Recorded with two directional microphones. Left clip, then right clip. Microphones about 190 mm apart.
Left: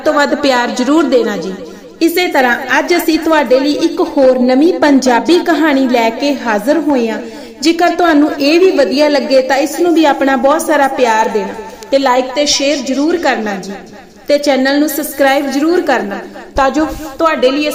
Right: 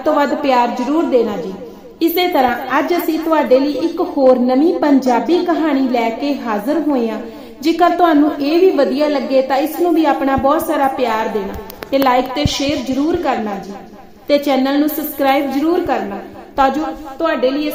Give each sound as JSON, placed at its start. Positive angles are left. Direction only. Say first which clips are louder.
{"t": 0.0, "sound": "a woman's voice", "louder": "left 4 dB", "side_deg": 15}
{"t": 2.0, "sound": "a woman's voice", "louder": "left 3 dB", "side_deg": 10}
{"t": 13.1, "sound": "a woman's voice", "louder": "left 5 dB", "side_deg": 20}